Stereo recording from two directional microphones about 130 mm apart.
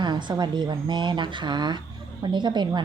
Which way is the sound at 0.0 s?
35° right (ahead or behind).